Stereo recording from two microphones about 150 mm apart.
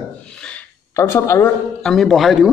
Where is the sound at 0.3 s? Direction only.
5° left (ahead or behind).